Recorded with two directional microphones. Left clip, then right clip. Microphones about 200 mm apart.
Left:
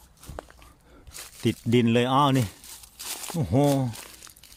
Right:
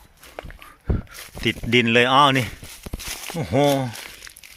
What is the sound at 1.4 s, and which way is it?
Speech, 15° left (ahead or behind).